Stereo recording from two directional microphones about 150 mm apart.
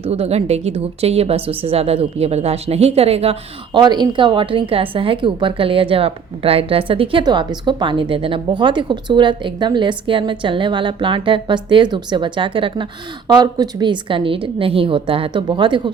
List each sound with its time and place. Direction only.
0.0 s a woman's voice: 40° right (ahead or behind)
3.8 s speech: 30° right (ahead or behind)